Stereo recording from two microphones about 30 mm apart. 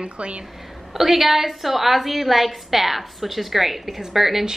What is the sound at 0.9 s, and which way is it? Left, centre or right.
A woman's voice, centre.